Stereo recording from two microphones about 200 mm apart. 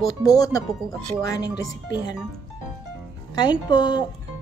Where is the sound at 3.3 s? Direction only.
20° left (ahead or behind).